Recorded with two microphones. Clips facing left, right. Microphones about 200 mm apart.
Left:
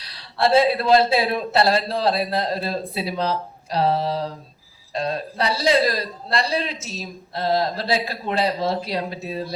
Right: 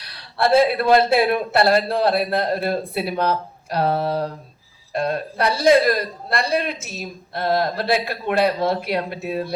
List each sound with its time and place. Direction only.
0.0 s a man's voice: 60° right (ahead or behind)